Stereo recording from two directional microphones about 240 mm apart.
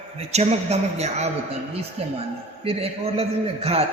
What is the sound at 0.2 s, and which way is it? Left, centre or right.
A man's voice, right.